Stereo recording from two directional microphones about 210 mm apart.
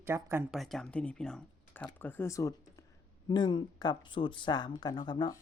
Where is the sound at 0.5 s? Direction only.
Centre (ahead or behind).